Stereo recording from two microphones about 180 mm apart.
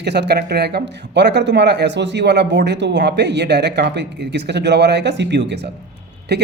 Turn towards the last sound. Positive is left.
turn(degrees=-65)  # may be behind; listen again after turning